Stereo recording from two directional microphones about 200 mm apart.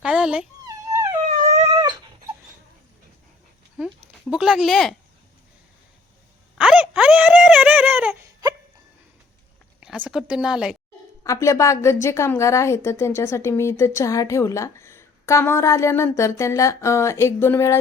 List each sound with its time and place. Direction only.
0.0 s dog: 5° right (ahead or behind)
1.7 s dog: 20° right (ahead or behind)
4.3 s speech: 5° right (ahead or behind)
6.6 s a sound: 5° right (ahead or behind)
9.8 s a sound: 5° right (ahead or behind)
11.2 s a woman's voice: 15° left (ahead or behind)